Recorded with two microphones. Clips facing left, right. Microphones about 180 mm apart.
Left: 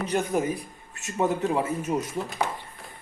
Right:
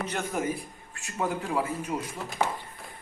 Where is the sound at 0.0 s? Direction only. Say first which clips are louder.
Left 5 dB; 15° left (ahead or behind).